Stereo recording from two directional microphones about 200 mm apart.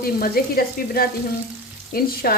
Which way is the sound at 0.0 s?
50° left (ahead or behind).